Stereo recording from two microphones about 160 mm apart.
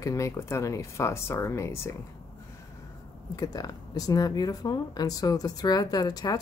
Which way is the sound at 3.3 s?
25° left (ahead or behind).